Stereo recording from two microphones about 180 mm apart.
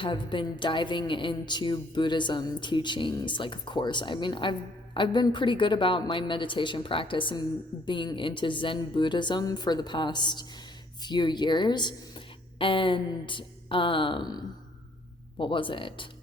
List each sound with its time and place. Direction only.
0.0 s a woman's voice: 25° left (ahead or behind)